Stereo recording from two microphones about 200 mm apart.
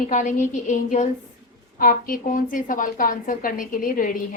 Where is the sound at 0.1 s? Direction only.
40° left (ahead or behind).